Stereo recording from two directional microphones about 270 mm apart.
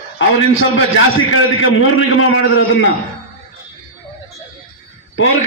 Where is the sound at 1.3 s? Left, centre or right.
Left.